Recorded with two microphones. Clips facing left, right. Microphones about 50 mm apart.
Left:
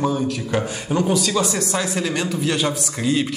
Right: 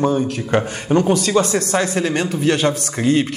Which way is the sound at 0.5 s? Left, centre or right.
Right.